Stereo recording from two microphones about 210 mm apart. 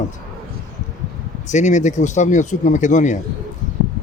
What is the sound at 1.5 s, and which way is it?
Speech, 35° left (ahead or behind).